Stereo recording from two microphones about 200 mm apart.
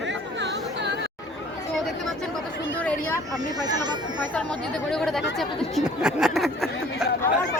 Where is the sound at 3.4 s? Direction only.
20° right (ahead or behind).